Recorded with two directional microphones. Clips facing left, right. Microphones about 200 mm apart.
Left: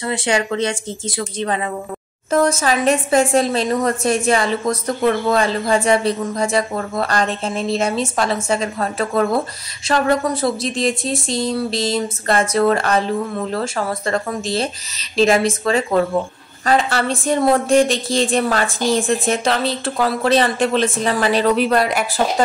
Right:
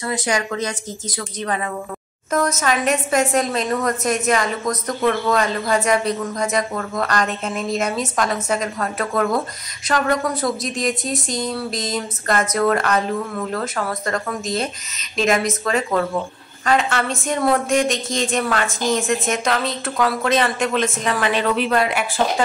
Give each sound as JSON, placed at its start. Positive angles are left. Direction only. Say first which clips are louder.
{"t": 0.0, "sound": "a woman's voice", "louder": "left 3 dB", "side_deg": 30}